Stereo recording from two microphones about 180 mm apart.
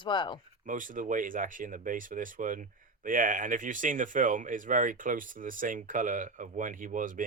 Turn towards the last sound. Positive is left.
turn(degrees=-50)  # may be behind; listen again after turning